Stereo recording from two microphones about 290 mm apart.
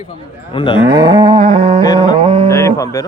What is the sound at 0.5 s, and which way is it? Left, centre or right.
Speech, centre.